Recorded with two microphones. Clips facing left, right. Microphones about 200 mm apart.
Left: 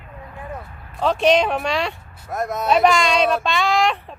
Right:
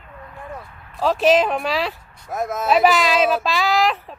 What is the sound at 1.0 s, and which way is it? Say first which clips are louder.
Speech: right 1 dB; centre (ahead or behind).